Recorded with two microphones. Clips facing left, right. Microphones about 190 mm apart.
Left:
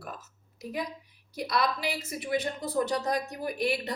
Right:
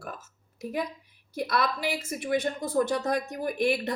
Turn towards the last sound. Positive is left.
turn(degrees=-50)  # may be behind; listen again after turning